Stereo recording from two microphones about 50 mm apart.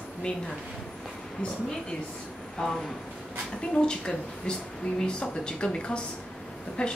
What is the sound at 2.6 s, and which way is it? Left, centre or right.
Speech, centre.